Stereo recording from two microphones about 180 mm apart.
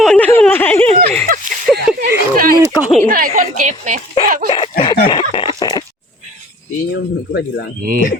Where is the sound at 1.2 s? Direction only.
45° right (ahead or behind).